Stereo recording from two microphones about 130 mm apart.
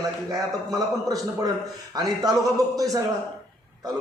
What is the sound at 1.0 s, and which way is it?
A man's voice, 30° right (ahead or behind).